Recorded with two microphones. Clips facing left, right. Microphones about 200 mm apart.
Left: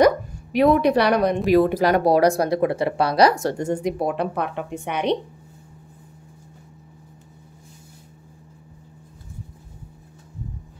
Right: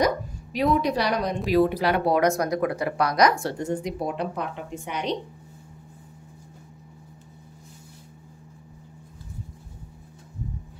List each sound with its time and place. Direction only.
0.0 s speech: 60° left (ahead or behind)
1.5 s speech: 50° left (ahead or behind)